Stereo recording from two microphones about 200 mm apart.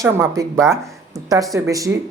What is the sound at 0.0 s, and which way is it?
Speech, 15° right (ahead or behind).